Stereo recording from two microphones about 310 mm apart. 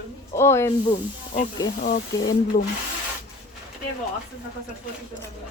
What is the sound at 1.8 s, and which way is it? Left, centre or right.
Speech, left.